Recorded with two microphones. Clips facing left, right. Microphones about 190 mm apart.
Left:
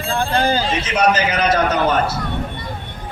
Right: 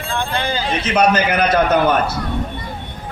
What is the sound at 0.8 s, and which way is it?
A man's voice, 60° right (ahead or behind).